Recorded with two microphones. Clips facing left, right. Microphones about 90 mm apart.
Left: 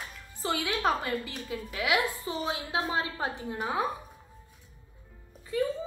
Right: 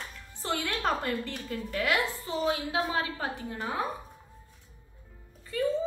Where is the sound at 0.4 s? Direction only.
Centre (ahead or behind).